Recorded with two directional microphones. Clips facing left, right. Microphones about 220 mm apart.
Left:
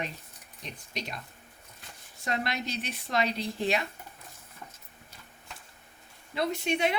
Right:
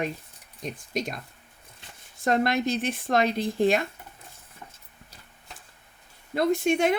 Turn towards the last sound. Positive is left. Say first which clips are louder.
# right 6 dB
turn(degrees=-50)  # may be behind; listen again after turning